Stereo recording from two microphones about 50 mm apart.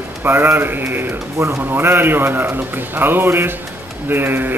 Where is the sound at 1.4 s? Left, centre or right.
Right.